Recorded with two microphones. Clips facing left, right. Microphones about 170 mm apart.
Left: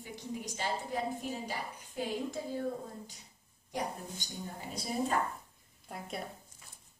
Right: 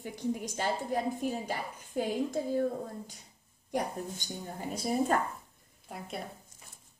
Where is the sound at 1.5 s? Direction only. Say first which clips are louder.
Right 4 dB; 50° right (ahead or behind).